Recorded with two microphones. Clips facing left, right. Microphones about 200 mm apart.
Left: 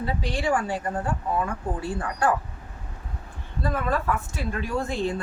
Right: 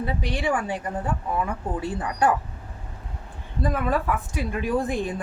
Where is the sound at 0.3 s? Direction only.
20° right (ahead or behind).